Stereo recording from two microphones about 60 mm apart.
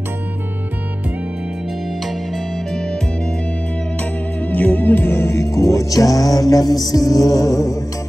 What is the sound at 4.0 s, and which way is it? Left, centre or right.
Music, left.